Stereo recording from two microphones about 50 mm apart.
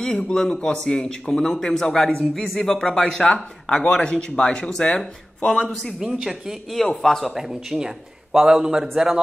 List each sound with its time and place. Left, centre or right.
0.0 s speech: centre
5.9 s speech: centre
6.8 s a man's voice: centre